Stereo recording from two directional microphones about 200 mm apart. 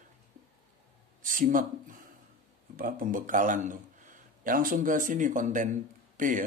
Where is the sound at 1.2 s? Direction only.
40° right (ahead or behind).